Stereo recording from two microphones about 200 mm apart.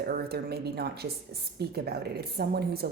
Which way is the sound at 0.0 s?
50° right (ahead or behind).